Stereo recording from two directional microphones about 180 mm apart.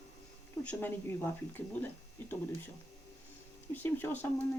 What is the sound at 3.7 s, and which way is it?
Speech, 10° left (ahead or behind).